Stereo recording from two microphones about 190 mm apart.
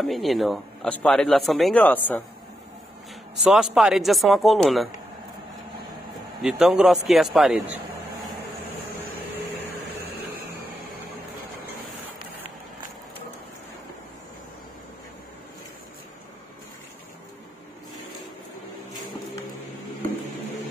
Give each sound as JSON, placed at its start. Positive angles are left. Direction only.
{"t": 0.0, "sound": "speech", "side_deg": 0}
{"t": 3.4, "sound": "speech", "side_deg": 0}
{"t": 6.4, "sound": "speech", "side_deg": -5}